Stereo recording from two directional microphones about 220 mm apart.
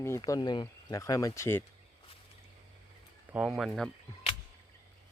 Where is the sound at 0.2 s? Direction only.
20° left (ahead or behind).